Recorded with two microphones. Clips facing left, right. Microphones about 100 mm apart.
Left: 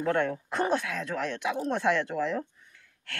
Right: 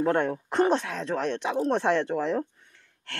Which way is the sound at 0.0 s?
30° right (ahead or behind).